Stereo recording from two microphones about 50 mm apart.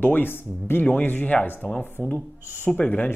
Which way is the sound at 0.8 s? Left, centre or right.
Left.